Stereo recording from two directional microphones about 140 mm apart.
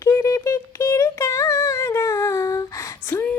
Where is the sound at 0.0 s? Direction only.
20° left (ahead or behind).